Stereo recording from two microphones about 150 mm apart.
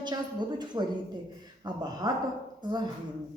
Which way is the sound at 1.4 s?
25° right (ahead or behind).